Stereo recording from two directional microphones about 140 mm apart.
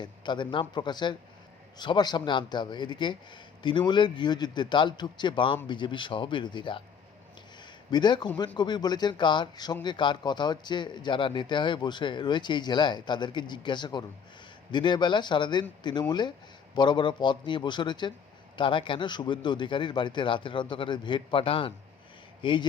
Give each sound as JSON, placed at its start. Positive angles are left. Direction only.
{"t": 0.0, "sound": "a man's voice", "side_deg": 35}
{"t": 7.9, "sound": "a man's voice", "side_deg": 30}